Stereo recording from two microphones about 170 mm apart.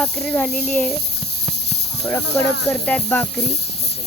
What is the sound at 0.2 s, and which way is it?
Speech, 5° left (ahead or behind).